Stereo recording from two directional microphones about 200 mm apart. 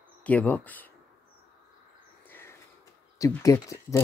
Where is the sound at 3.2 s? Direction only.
15° left (ahead or behind).